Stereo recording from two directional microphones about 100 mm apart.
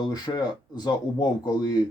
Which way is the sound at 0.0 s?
45° left (ahead or behind).